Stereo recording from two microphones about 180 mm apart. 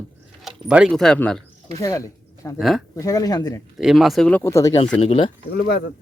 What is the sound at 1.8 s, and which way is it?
Speech, 20° left (ahead or behind).